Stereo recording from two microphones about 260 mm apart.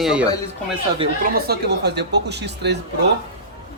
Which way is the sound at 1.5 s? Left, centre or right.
Right.